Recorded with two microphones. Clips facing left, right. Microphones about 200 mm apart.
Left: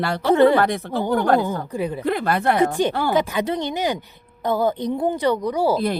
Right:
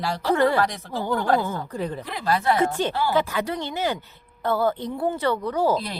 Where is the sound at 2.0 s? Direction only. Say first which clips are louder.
Left 6 dB; 60° left (ahead or behind).